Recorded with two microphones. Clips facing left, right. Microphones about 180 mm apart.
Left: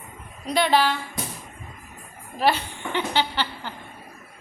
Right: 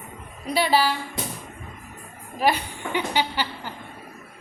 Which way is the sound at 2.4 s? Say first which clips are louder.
Even; 10° right (ahead or behind).